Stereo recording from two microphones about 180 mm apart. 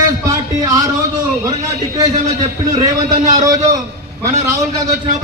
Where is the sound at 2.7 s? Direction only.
20° right (ahead or behind).